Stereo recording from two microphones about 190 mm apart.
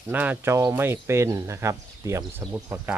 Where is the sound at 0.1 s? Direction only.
10° right (ahead or behind).